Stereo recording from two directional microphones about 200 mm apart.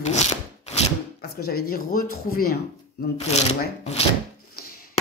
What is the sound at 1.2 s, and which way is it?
A woman's voice, 50° left (ahead or behind).